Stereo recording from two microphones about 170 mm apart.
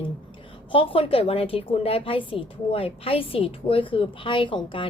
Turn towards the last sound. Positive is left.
turn(degrees=30)  # may be behind; listen again after turning